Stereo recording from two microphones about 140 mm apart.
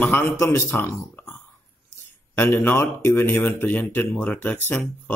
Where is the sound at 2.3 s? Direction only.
15° left (ahead or behind).